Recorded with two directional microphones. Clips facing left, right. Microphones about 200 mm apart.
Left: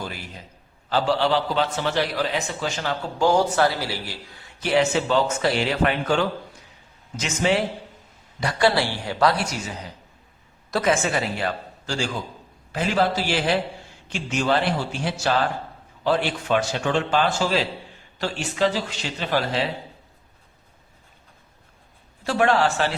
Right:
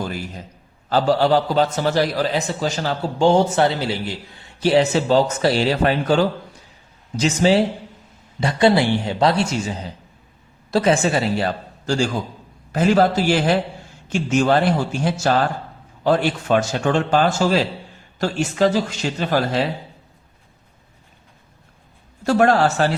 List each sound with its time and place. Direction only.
0.9 s a man's voice: 40° right (ahead or behind)
22.2 s a man's voice: 45° right (ahead or behind)